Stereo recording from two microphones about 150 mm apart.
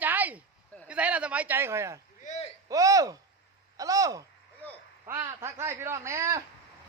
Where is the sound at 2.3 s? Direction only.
45° left (ahead or behind).